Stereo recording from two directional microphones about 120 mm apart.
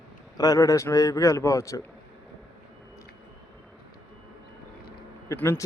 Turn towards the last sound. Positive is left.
turn(degrees=20)  # may be behind; listen again after turning